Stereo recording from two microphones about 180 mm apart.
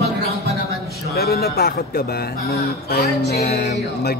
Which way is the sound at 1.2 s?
60° left (ahead or behind).